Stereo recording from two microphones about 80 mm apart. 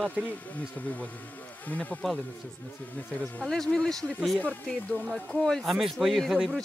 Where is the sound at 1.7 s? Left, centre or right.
Centre.